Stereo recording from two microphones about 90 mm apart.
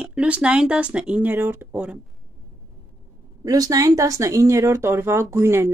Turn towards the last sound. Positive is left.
turn(degrees=-30)  # may be behind; listen again after turning